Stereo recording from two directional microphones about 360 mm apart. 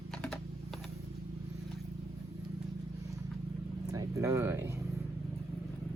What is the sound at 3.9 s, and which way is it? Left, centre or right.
Speech, centre.